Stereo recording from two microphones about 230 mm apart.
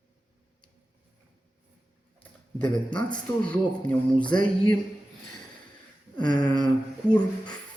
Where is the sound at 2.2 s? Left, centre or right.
Centre.